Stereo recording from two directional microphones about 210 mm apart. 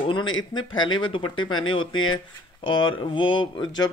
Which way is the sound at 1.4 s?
75° left (ahead or behind).